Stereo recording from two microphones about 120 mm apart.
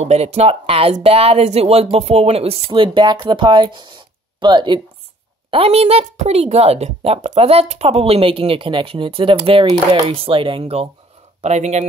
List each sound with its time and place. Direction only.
0.0 s a woman's voice: 65° right (ahead or behind); by 4.8 s 40° right (ahead or behind)
5.5 s a woman's voice: 55° right (ahead or behind); by 10.0 s 40° right (ahead or behind)
10.0 s speech: 50° right (ahead or behind)
11.4 s speech: 70° right (ahead or behind)